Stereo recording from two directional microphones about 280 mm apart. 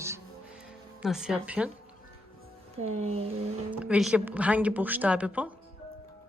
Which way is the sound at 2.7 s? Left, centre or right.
Right.